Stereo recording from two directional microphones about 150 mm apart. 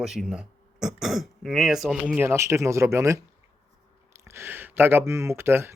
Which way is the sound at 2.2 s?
15° right (ahead or behind).